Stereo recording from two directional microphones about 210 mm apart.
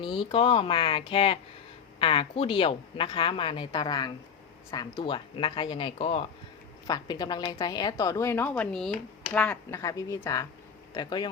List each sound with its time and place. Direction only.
0.0 s a woman's voice: 25° left (ahead or behind)